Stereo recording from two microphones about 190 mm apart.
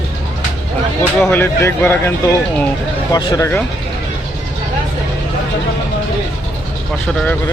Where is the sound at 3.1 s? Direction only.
15° left (ahead or behind).